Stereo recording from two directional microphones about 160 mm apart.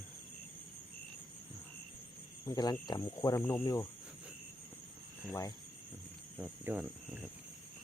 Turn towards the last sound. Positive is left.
turn(degrees=-5)  # may be behind; listen again after turning